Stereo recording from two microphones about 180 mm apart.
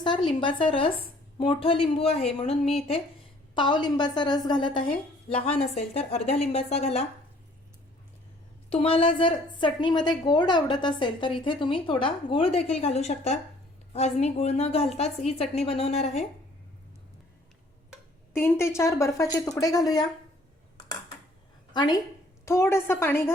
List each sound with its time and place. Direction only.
0.0 s a woman's voice: 25° left (ahead or behind)
5.3 s a woman's voice: 35° left (ahead or behind)
8.7 s a woman's voice: 30° left (ahead or behind)
18.3 s a woman's voice: 15° left (ahead or behind)
21.7 s a woman's voice: 20° left (ahead or behind)